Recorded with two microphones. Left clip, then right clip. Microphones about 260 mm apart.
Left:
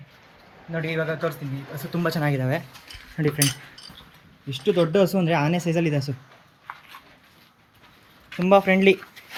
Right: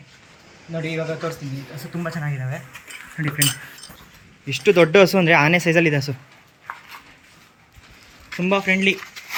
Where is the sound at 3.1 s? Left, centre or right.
Centre.